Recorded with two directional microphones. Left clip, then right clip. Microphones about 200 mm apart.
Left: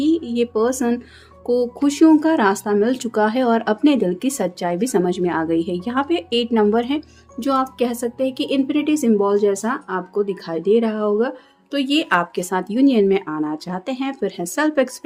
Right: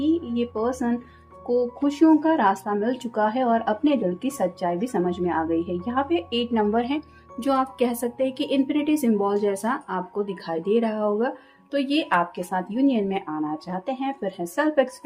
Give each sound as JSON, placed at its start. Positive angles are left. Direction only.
{"t": 0.0, "sound": "speech", "side_deg": 45}